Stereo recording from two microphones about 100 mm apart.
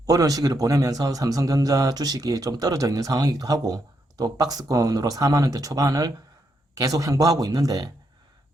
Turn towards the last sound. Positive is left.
turn(degrees=-40)  # may be behind; listen again after turning